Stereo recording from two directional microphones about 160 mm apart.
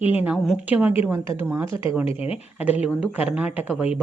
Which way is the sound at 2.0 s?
40° left (ahead or behind).